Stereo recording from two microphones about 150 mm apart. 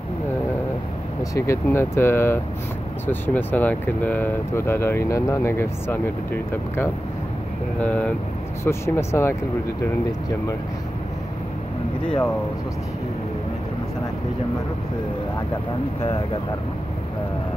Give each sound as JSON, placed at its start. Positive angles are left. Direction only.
{"t": 1.3, "sound": "speech", "side_deg": 20}
{"t": 12.1, "sound": "speech", "side_deg": 5}